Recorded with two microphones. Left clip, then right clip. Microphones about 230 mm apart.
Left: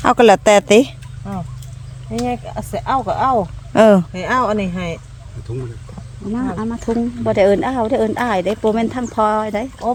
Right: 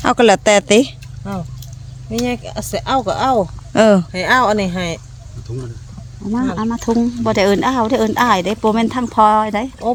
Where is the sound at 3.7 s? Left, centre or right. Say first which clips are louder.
Left 1 dB; centre.